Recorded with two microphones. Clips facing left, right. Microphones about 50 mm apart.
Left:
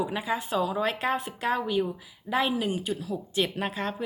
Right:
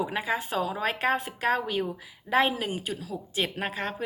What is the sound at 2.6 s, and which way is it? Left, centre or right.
A woman's voice, right.